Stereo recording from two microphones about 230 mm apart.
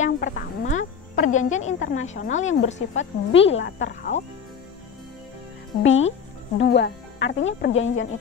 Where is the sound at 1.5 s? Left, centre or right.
Left.